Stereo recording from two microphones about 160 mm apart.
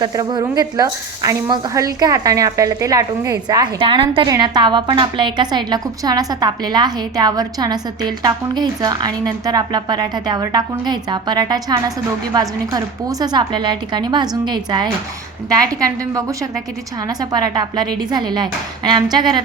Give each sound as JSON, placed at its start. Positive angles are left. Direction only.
{"t": 0.0, "sound": "a woman's voice", "side_deg": -25}
{"t": 17.1, "sound": "a woman's voice", "side_deg": -25}